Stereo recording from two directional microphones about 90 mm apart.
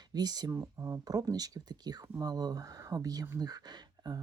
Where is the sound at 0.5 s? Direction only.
35° right (ahead or behind).